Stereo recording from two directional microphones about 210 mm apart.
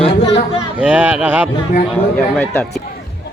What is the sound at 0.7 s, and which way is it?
Speech, 5° right (ahead or behind).